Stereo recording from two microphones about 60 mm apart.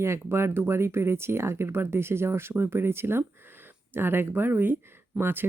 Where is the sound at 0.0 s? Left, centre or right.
Right.